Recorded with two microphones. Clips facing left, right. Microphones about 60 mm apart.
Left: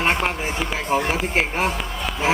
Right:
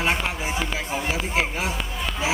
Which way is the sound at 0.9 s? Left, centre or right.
Left.